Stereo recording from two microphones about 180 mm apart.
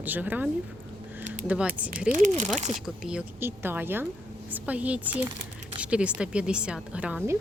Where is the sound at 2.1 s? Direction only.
45° right (ahead or behind).